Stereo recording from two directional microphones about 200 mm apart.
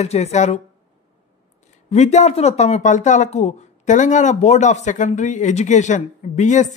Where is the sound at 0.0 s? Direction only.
30° left (ahead or behind).